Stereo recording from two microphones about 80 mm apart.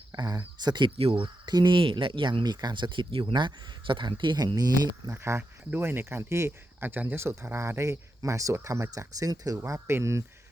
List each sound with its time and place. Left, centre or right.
0.1 s speech: right
5.1 s speech: right
9.6 s speech: right